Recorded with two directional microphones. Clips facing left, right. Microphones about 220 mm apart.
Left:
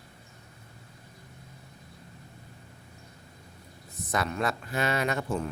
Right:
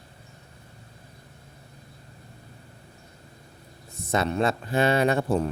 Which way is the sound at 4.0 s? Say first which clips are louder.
Right 5 dB; 25° right (ahead or behind).